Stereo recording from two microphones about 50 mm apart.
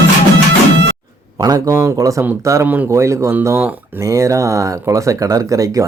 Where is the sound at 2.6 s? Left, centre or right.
Right.